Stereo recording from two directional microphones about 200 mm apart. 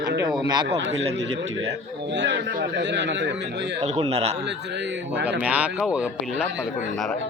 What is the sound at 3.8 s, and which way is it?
Speech, 30° right (ahead or behind).